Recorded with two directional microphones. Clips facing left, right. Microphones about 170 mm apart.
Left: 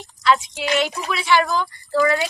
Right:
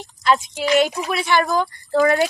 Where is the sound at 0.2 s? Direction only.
45° right (ahead or behind).